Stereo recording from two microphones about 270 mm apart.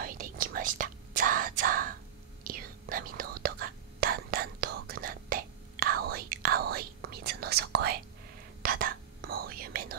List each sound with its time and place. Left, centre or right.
0.0 s whispering: right